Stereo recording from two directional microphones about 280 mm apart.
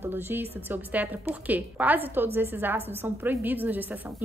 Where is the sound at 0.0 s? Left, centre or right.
Centre.